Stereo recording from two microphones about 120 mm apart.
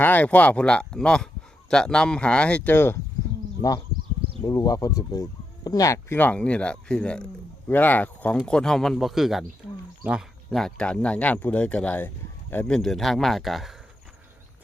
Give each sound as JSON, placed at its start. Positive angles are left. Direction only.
{"t": 0.0, "sound": "speech", "side_deg": 15}
{"t": 3.6, "sound": "speech", "side_deg": 30}
{"t": 6.1, "sound": "speech", "side_deg": 10}
{"t": 10.5, "sound": "speech", "side_deg": 5}
{"t": 12.7, "sound": "speech", "side_deg": 5}